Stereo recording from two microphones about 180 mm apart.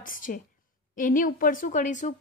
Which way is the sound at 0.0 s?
50° left (ahead or behind).